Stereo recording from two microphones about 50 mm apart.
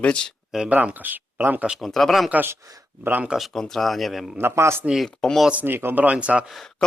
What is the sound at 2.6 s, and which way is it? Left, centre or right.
Speech, right.